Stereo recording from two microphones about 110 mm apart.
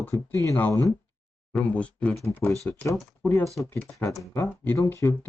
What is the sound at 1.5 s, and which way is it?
Speech, 10° left (ahead or behind).